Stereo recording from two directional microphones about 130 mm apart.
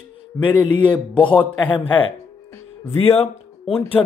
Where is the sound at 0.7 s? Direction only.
35° left (ahead or behind).